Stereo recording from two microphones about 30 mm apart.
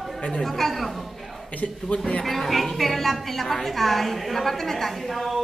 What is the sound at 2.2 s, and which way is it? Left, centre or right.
A woman's voice, centre.